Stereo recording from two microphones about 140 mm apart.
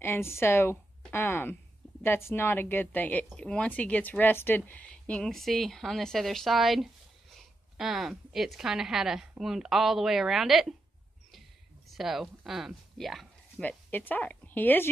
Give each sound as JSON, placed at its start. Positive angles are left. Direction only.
{"t": 0.0, "sound": "a woman's voice", "side_deg": 15}
{"t": 11.9, "sound": "speech", "side_deg": 0}
{"t": 13.6, "sound": "a woman's voice", "side_deg": 10}